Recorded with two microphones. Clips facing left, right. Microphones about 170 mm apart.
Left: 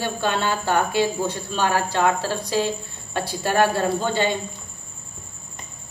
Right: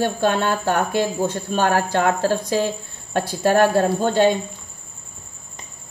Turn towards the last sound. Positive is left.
turn(degrees=-50)  # may be behind; listen again after turning